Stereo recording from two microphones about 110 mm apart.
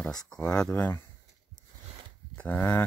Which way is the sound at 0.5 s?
10° left (ahead or behind).